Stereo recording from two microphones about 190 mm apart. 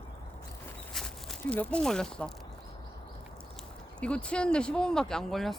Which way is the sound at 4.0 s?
5° left (ahead or behind).